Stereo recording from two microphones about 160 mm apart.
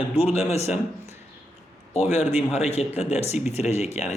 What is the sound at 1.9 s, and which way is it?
Speech, 45° left (ahead or behind).